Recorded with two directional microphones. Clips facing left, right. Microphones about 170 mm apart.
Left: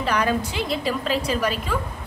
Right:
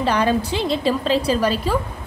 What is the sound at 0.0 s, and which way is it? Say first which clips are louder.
A woman's voice: right 4 dB; 30° right (ahead or behind).